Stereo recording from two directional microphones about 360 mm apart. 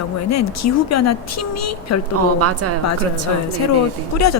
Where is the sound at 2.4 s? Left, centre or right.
Right.